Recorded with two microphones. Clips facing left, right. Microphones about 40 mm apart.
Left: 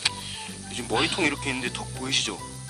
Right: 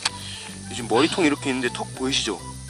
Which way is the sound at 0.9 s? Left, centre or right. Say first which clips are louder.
Right 5 dB; centre.